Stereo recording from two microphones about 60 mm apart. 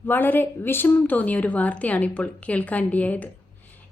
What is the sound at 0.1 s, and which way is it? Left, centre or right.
A woman's voice, left.